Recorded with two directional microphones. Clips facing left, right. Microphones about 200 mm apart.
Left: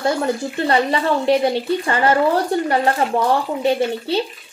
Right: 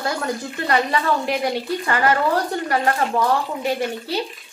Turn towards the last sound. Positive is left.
turn(degrees=25)  # may be behind; listen again after turning